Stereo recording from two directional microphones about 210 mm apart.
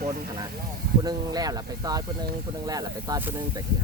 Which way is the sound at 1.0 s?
20° right (ahead or behind).